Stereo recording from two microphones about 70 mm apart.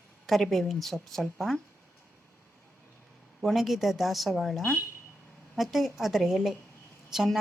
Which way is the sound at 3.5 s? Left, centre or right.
Centre.